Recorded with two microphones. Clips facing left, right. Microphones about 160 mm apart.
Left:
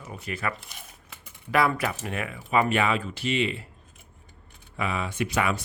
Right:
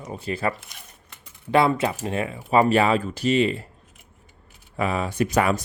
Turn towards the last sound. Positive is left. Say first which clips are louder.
# right 5 dB
turn(degrees=-40)  # may be behind; listen again after turning